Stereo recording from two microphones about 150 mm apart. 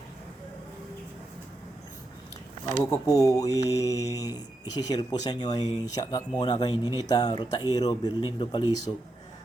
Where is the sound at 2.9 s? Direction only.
25° left (ahead or behind).